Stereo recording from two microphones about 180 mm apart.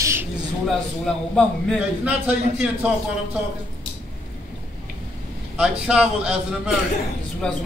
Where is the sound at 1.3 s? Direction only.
5° left (ahead or behind).